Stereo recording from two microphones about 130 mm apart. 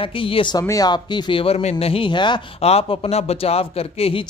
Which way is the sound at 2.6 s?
50° left (ahead or behind).